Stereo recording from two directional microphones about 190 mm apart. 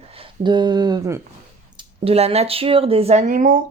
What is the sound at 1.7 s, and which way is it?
Speech, 30° right (ahead or behind).